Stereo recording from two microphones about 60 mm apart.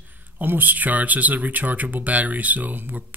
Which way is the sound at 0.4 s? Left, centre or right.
Right.